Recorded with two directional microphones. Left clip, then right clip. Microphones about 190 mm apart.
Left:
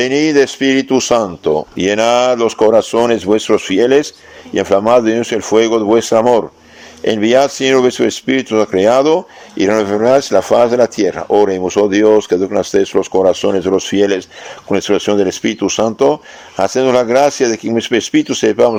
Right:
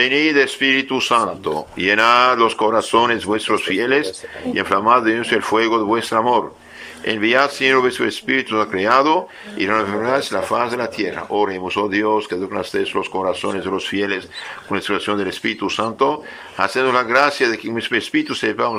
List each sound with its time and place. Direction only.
0.0 s speech: 30° left (ahead or behind)